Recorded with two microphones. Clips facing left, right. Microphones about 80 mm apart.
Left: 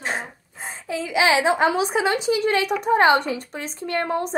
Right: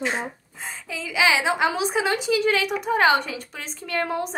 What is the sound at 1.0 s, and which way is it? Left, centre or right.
A woman's voice, left.